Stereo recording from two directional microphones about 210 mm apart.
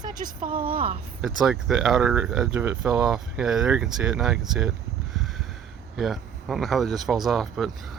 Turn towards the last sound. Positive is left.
turn(degrees=0)  # may be behind; listen again after turning